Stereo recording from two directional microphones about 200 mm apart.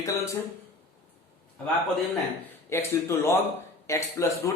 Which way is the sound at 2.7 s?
15° left (ahead or behind).